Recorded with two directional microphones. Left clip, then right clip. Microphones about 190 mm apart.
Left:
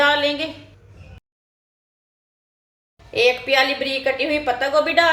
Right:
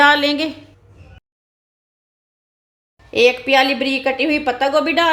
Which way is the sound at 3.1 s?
50° right (ahead or behind).